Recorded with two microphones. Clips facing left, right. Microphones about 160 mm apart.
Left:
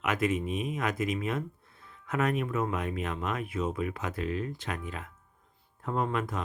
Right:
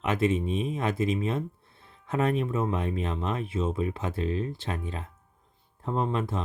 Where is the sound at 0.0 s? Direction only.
30° right (ahead or behind).